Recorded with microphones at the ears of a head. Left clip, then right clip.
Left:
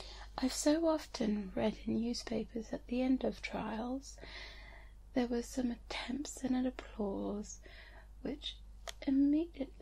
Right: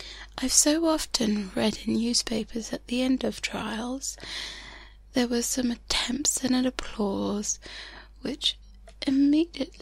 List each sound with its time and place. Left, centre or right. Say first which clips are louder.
0.0 s speech: right 6 dB; right